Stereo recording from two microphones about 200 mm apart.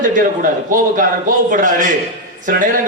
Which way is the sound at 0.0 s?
40° right (ahead or behind).